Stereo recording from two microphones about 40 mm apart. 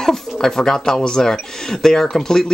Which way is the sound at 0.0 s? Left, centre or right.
Centre.